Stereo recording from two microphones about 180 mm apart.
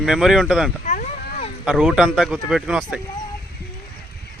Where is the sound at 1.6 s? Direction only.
5° right (ahead or behind).